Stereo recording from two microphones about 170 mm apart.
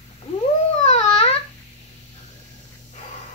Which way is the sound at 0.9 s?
35° left (ahead or behind).